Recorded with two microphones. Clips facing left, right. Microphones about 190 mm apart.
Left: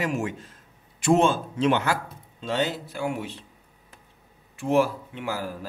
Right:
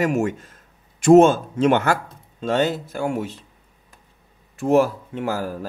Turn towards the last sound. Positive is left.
turn(degrees=-45)  # may be behind; listen again after turning